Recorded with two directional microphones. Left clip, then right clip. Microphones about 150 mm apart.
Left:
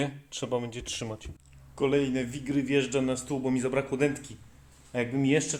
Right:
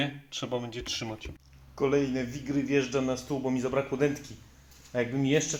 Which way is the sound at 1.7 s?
10° left (ahead or behind).